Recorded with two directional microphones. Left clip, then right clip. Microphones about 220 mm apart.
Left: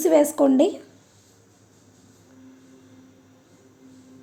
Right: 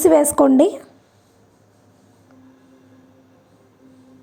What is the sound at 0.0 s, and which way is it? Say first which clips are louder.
Speech: right 5 dB; 25° right (ahead or behind).